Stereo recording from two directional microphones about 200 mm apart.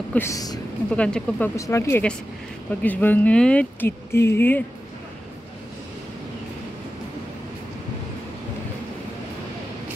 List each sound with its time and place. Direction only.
0.1 s speech: 15° left (ahead or behind)
0.9 s speech: 5° left (ahead or behind)